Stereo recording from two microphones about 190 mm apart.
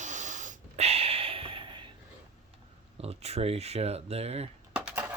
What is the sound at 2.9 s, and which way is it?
Speech, 30° right (ahead or behind).